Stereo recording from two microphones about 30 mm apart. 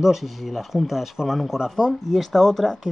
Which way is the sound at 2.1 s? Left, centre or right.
Centre.